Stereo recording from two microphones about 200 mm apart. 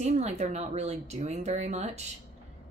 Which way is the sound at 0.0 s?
35° right (ahead or behind).